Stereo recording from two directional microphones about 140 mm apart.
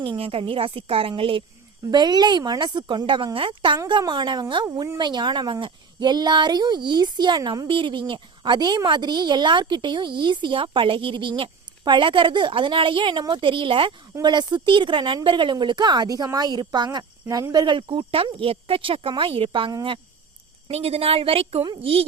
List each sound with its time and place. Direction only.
0.0 s speech: 40° right (ahead or behind)